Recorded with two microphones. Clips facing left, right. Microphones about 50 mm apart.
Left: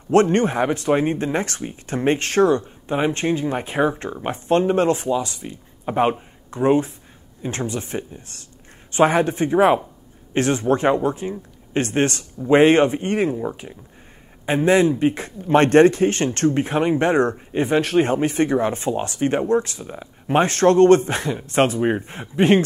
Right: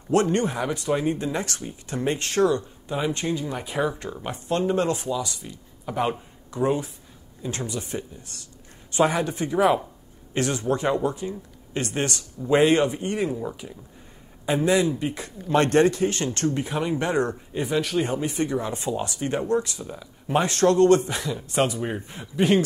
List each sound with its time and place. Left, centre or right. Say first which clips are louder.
0.1 s speech: left 5 dB; left
13.3 s speech: left 5 dB; left
14.4 s speech: left 5 dB; left